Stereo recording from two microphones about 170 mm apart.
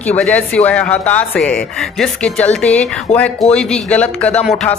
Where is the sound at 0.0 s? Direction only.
10° left (ahead or behind).